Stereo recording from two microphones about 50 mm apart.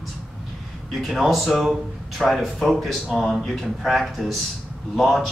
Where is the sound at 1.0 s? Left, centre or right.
Centre.